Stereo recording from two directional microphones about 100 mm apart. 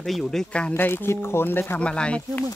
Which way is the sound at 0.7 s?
20° left (ahead or behind).